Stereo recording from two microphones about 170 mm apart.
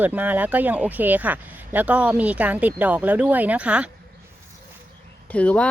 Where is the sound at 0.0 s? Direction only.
10° right (ahead or behind).